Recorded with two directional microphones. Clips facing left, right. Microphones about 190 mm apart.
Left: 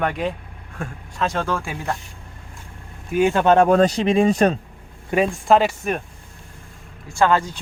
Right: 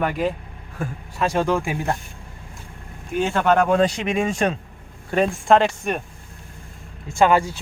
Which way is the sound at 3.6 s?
40° left (ahead or behind).